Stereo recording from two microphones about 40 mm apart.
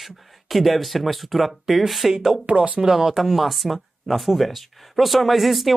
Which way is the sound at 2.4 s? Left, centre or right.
Right.